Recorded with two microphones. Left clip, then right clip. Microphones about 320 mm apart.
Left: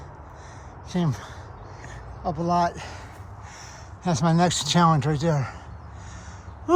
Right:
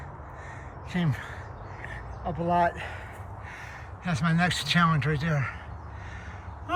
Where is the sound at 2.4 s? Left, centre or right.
Centre.